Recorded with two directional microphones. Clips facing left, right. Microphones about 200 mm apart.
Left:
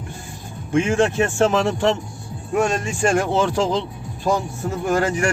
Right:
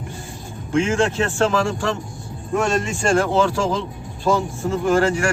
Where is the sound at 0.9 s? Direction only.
15° left (ahead or behind).